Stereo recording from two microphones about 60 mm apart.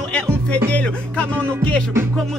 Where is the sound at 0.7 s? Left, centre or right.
Left.